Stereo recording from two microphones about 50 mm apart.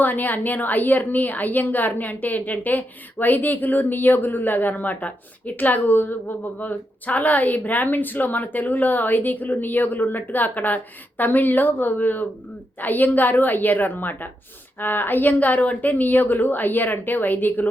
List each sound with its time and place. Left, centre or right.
0.0 s a woman's voice: left